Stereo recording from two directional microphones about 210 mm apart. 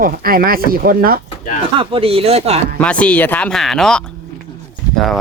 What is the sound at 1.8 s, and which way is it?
Speech, 25° right (ahead or behind).